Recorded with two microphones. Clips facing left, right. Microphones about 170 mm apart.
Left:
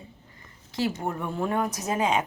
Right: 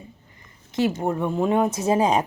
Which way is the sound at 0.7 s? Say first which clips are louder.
Right 6 dB; 20° right (ahead or behind).